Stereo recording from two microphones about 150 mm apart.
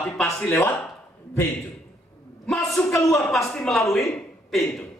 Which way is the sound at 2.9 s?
20° left (ahead or behind).